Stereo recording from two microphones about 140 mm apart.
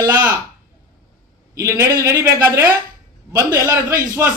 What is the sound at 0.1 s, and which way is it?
Speech, 15° right (ahead or behind).